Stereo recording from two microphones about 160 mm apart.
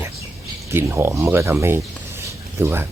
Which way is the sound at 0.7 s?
15° right (ahead or behind).